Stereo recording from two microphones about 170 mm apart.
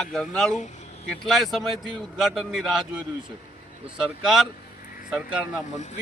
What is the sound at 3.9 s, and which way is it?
Speech, centre (ahead or behind).